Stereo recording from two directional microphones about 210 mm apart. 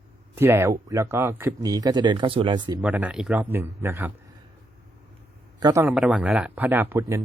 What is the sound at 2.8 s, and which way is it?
A man's voice, 5° right (ahead or behind).